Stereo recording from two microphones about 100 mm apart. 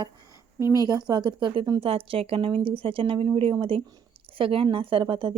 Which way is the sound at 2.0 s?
70° right (ahead or behind).